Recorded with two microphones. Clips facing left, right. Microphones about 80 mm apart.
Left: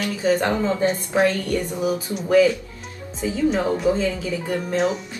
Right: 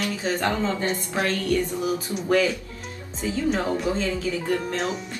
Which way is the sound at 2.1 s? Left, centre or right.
Centre.